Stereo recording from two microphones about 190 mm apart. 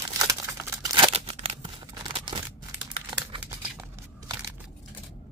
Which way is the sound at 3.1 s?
20° right (ahead or behind).